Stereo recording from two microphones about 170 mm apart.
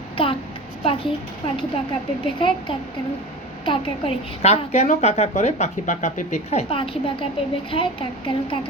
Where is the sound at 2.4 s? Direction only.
30° left (ahead or behind).